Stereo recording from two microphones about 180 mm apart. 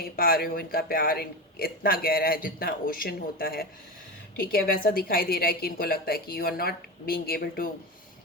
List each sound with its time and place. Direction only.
0.0 s a man's voice: 55° left (ahead or behind)